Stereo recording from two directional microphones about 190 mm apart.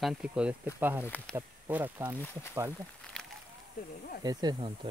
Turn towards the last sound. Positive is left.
turn(degrees=-25)  # may be behind; listen again after turning